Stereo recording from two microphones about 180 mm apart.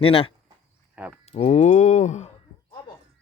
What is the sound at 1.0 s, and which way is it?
Speech, 10° right (ahead or behind).